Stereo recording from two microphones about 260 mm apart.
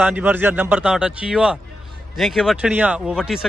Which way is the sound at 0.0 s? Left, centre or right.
Centre.